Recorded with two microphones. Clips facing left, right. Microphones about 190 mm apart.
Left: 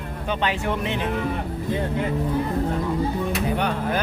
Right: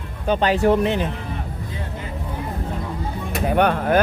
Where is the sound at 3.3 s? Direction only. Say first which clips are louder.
Right 5 dB; 55° right (ahead or behind).